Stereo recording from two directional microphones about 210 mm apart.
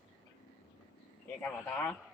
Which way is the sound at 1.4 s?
10° left (ahead or behind).